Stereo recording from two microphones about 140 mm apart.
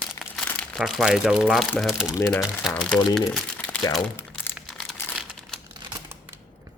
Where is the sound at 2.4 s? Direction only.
Centre (ahead or behind).